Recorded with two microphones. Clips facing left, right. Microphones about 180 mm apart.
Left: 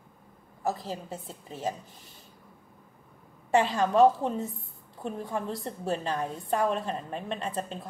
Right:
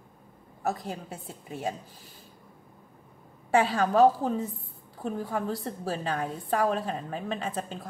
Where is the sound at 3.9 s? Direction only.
Centre (ahead or behind).